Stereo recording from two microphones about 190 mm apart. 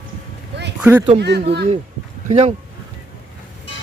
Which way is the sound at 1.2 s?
60° right (ahead or behind).